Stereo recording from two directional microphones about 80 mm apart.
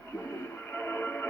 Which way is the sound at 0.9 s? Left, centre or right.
Left.